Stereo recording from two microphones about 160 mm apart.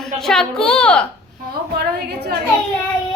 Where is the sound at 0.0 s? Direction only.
5° left (ahead or behind).